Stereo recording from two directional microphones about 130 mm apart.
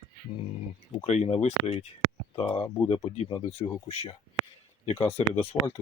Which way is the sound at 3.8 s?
50° left (ahead or behind).